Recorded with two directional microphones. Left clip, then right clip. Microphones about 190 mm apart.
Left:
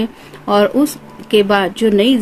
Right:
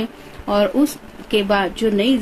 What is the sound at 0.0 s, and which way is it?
Speech, 45° left (ahead or behind).